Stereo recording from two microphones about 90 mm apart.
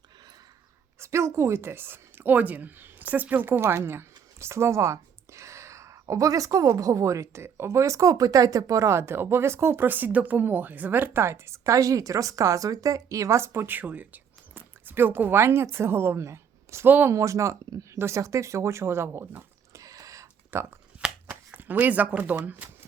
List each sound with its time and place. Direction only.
0.9 s a woman's voice: 30° right (ahead or behind)
17.2 s speech: 35° right (ahead or behind)
19.8 s a sound: 40° right (ahead or behind)
21.2 s speech: 20° right (ahead or behind)